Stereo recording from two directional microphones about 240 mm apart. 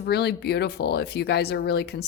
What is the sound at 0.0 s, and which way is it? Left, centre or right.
Speech, left.